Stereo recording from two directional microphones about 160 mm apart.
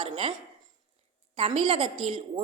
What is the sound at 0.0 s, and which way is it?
Speech, 35° right (ahead or behind).